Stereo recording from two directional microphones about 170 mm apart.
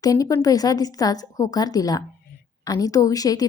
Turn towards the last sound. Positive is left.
turn(degrees=20)  # may be behind; listen again after turning